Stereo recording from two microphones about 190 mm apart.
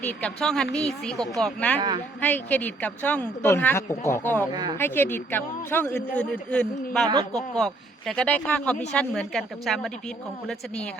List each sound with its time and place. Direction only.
0.0 s a woman's voice: 5° left (ahead or behind)
4.5 s speech: 20° right (ahead or behind)
4.8 s a woman's voice: 10° left (ahead or behind)